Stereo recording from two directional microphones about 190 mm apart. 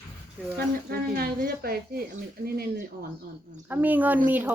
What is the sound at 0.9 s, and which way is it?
A woman's voice, 50° right (ahead or behind).